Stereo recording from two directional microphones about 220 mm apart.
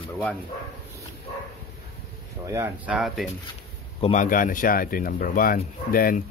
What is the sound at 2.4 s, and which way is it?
Speech, 10° right (ahead or behind).